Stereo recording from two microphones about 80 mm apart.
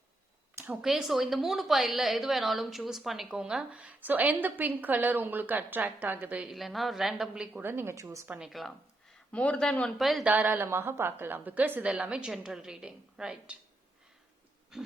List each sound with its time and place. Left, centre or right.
0.5 s a sound: right
0.8 s a woman's voice: centre; by 6.4 s right
6.4 s a woman's voice: centre
7.6 s a woman's voice: right
7.9 s a woman's voice: right
8.4 s a woman's voice: centre
9.3 s speech: centre
10.0 s a woman's voice: centre
10.2 s a woman's voice: right
14.7 s pig: centre